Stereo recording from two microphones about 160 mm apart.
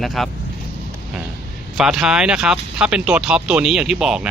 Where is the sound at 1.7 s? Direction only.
5° right (ahead or behind).